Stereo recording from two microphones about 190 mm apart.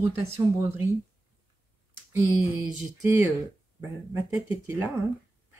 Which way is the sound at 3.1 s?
15° right (ahead or behind).